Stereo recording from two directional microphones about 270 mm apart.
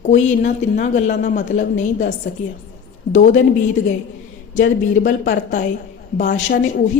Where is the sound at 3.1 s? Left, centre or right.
Left.